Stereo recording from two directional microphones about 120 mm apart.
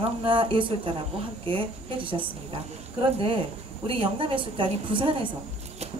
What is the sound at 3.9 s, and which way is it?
Speech, 45° right (ahead or behind).